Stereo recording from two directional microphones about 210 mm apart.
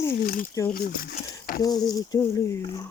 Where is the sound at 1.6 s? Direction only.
20° left (ahead or behind).